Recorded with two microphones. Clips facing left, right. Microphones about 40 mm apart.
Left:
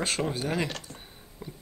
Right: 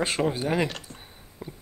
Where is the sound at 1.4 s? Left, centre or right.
Right.